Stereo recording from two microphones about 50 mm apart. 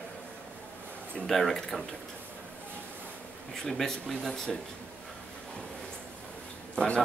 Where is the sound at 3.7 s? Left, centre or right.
Centre.